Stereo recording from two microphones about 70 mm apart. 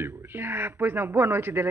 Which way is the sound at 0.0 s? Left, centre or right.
Right.